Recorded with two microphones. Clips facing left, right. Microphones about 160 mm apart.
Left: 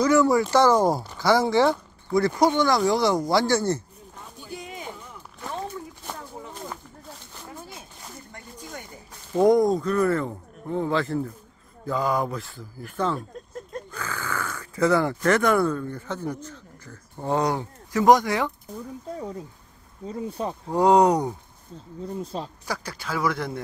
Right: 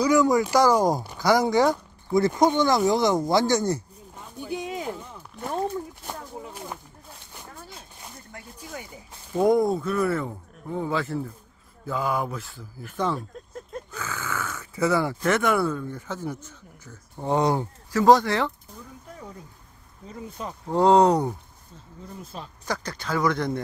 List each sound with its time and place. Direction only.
0.0 s speech: 15° right (ahead or behind)
4.4 s a sound: 70° right (ahead or behind); by 4.9 s 90° right
6.0 s a sound: 10° right (ahead or behind)
8.3 s a sound: 5° right (ahead or behind)
9.3 s speech: 5° right (ahead or behind)
16.4 s a sound: 5° right (ahead or behind)
17.3 s speech: 20° right (ahead or behind)
17.9 s speech: 15° left (ahead or behind)
20.1 s speech: 30° left (ahead or behind)
20.7 s speech: 15° left (ahead or behind)
22.2 s speech: 35° left (ahead or behind)
22.7 s speech: 5° left (ahead or behind)